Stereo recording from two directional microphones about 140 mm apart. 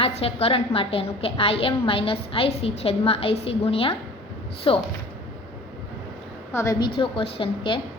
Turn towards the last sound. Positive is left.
turn(degrees=40)  # may be behind; listen again after turning